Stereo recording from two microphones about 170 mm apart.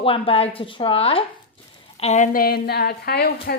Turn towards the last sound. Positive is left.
turn(degrees=65)  # may be behind; listen again after turning